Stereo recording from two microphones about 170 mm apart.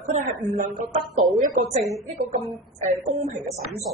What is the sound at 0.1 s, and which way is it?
Speech, 50° right (ahead or behind).